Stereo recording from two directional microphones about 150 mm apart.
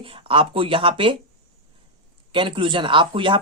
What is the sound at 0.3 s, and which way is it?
Speech, 35° right (ahead or behind).